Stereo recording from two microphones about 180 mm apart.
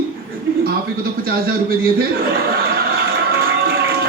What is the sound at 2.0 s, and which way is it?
Speech, 55° right (ahead or behind).